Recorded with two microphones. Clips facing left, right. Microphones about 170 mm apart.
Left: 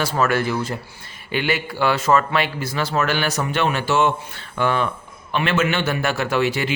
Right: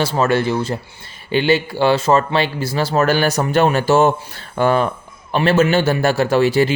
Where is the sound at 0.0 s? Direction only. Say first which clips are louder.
Right 4 dB; 25° right (ahead or behind).